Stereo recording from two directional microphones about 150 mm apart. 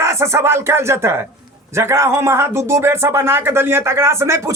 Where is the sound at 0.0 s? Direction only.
20° right (ahead or behind).